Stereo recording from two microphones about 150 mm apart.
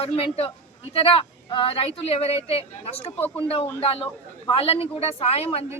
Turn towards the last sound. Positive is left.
turn(degrees=40)  # may be behind; listen again after turning